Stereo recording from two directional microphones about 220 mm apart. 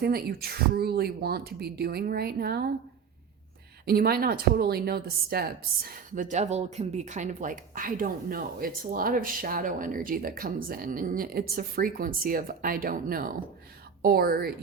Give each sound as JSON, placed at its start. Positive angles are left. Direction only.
{"t": 0.0, "sound": "speech", "side_deg": -45}
{"t": 3.8, "sound": "a woman's voice", "side_deg": -45}